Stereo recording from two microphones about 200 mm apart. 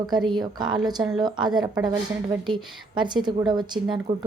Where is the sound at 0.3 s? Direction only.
20° right (ahead or behind).